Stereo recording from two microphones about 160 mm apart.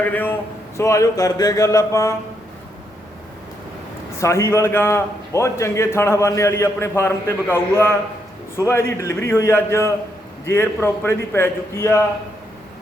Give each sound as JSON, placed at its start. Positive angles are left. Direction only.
{"t": 0.0, "sound": "a man's voice", "side_deg": 10}
{"t": 4.2, "sound": "a man's voice", "side_deg": 15}